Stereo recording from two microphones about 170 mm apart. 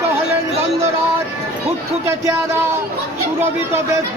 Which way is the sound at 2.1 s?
15° right (ahead or behind).